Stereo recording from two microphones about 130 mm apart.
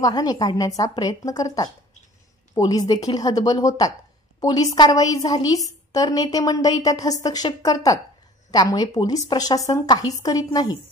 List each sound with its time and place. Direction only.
0.0 s a woman's voice: 30° left (ahead or behind)